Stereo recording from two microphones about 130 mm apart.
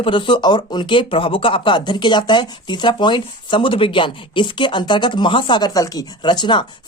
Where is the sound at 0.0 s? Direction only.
40° left (ahead or behind).